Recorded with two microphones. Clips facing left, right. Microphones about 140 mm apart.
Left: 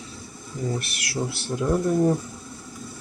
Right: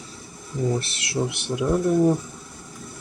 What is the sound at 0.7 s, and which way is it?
Speech, 25° right (ahead or behind).